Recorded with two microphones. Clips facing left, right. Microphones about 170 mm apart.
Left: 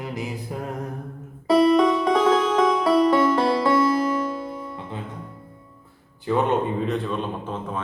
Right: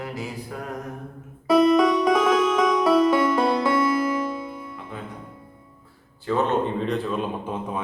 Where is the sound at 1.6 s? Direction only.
30° left (ahead or behind).